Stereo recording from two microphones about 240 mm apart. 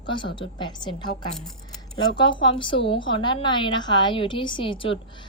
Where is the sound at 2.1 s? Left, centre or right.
Centre.